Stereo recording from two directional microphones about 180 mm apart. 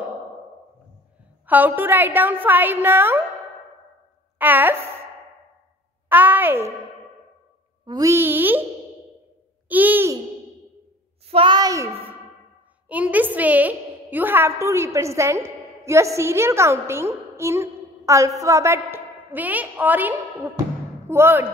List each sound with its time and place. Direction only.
1.4 s a woman's voice: 10° right (ahead or behind)
4.4 s a woman's voice: 10° right (ahead or behind)
6.0 s a child's voice: 10° right (ahead or behind)
7.8 s a woman's voice: 20° right (ahead or behind)
9.7 s a woman's voice: 10° right (ahead or behind)
11.2 s a child's voice: 30° right (ahead or behind); by 21.5 s 10° right (ahead or behind)